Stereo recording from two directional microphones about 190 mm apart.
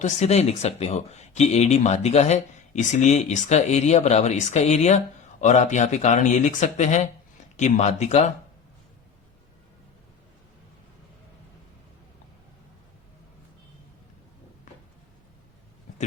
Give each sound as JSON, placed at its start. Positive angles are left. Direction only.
{"t": 0.0, "sound": "speech", "side_deg": 35}